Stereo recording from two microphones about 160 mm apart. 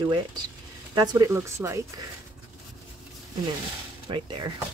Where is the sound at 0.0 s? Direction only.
30° right (ahead or behind).